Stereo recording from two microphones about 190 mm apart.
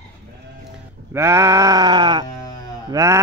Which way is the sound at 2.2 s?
20° left (ahead or behind).